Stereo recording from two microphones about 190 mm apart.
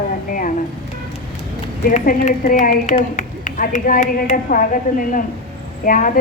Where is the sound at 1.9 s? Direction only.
45° left (ahead or behind).